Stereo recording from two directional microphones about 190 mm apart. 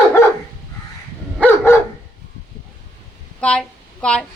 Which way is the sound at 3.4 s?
5° left (ahead or behind).